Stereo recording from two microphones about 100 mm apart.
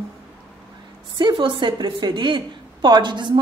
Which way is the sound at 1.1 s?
55° right (ahead or behind).